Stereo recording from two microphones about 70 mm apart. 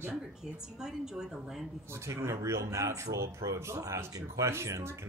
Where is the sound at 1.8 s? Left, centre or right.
Right.